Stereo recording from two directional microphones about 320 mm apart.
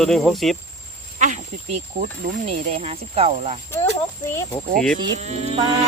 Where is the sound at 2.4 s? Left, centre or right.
Right.